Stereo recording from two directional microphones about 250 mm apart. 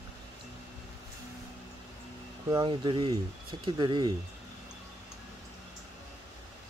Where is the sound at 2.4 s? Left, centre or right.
Centre.